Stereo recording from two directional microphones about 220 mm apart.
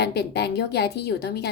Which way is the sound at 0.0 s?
50° left (ahead or behind).